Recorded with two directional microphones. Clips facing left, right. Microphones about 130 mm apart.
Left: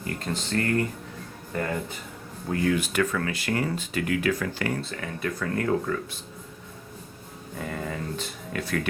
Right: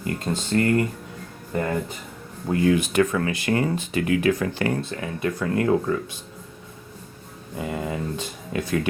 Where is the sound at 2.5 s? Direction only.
20° right (ahead or behind).